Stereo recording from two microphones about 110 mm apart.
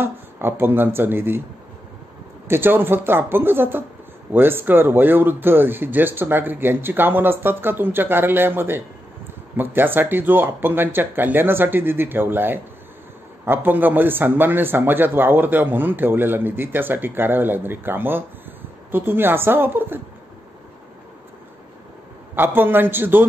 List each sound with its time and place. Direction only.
0.0 s speech: 20° right (ahead or behind)
2.4 s speech: 20° right (ahead or behind)
22.3 s speech: 20° right (ahead or behind)